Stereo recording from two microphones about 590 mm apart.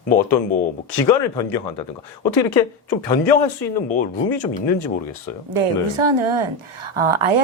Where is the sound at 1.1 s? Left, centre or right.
Left.